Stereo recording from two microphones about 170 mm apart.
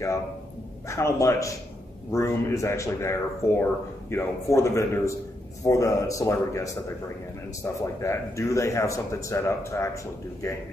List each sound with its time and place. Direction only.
0.8 s a man's voice: 15° left (ahead or behind)